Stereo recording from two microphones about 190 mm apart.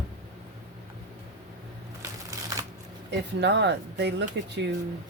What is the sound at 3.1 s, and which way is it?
Speech, 65° right (ahead or behind).